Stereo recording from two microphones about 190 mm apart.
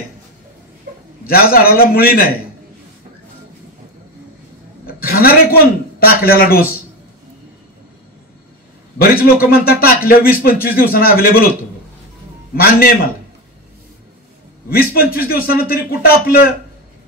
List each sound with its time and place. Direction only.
1.2 s a man's voice: 50° left (ahead or behind)
4.8 s a man's voice: 50° left (ahead or behind)
8.9 s a man's voice: 50° left (ahead or behind)
12.5 s a man's voice: 50° left (ahead or behind)
14.7 s a man's voice: 50° left (ahead or behind)